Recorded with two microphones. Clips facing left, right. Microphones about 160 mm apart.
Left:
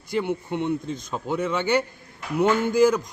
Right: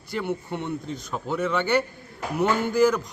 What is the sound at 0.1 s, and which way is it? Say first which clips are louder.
Speech: left 3 dB; 15° left (ahead or behind).